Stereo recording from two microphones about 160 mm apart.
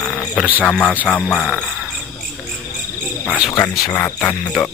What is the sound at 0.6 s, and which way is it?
Speech, 5° left (ahead or behind).